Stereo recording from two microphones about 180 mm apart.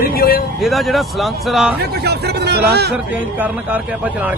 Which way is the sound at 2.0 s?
65° right (ahead or behind).